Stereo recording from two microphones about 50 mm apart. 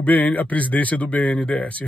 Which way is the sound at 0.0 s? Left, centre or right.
Left.